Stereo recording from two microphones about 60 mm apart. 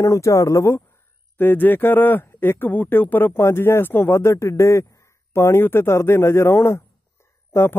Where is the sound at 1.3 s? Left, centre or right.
Left.